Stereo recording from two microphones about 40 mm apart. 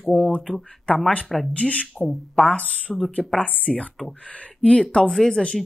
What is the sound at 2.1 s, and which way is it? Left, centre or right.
Speech, centre.